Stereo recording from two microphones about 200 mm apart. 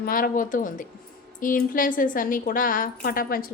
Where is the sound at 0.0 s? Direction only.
45° left (ahead or behind).